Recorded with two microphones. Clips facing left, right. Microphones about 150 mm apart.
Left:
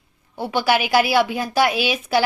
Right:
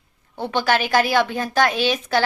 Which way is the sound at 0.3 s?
10° left (ahead or behind).